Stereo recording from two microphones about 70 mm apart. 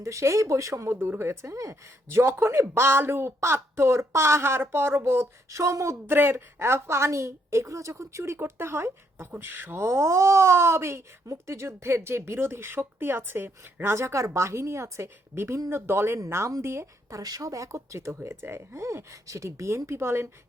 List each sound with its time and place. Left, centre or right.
0.0 s speech: right
0.9 s speech: right
2.1 s speech: right
6.1 s speech: right